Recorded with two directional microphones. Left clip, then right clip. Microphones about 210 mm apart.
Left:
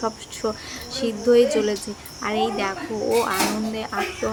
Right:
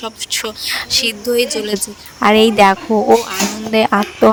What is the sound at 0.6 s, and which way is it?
Speech, 50° right (ahead or behind).